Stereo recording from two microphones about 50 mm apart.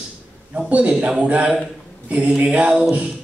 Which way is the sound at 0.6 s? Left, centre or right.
Right.